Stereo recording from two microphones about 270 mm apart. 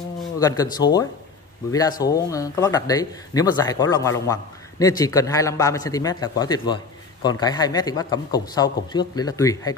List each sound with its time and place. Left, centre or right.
0.4 s speech: centre